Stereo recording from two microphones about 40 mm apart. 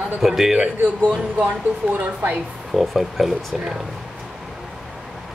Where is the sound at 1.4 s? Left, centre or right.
Right.